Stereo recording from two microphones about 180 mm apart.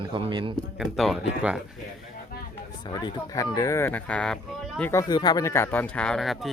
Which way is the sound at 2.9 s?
25° left (ahead or behind).